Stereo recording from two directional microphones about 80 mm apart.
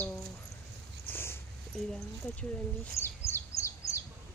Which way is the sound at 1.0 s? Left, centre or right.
Left.